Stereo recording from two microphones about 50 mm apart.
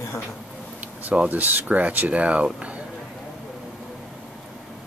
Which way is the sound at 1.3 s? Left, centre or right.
Right.